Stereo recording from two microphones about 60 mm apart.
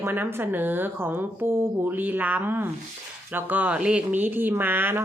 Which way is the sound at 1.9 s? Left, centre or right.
Right.